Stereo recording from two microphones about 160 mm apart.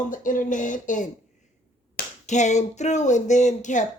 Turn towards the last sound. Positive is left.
turn(degrees=50)  # may be behind; listen again after turning